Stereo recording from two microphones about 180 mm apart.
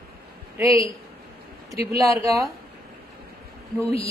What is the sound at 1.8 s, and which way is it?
Speech, 15° right (ahead or behind).